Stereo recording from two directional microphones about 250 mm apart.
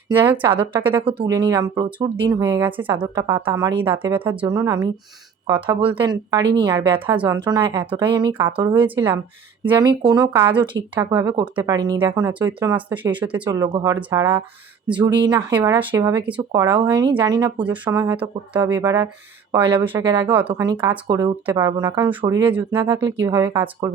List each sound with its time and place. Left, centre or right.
0.3 s speech: centre
1.0 s speech: centre
7.4 s speech: centre
15.1 s speech: centre
19.8 s speech: centre